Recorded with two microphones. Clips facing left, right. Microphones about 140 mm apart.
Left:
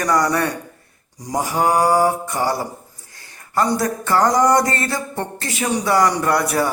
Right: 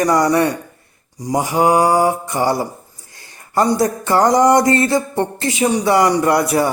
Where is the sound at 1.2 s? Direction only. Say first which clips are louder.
Right 4 dB; 10° right (ahead or behind).